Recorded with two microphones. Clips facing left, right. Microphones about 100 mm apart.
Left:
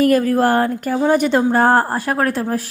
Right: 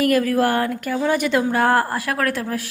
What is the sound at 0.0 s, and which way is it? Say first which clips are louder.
A woman's voice: left 3 dB; 35° left (ahead or behind).